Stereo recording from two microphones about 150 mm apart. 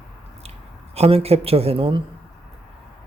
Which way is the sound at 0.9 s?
40° right (ahead or behind).